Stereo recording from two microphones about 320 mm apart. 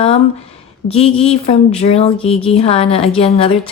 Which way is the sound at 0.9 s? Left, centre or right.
Centre.